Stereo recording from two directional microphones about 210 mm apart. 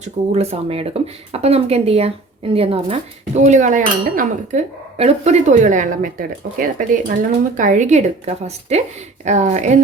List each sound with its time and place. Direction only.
0.0 s speech: 30° right (ahead or behind)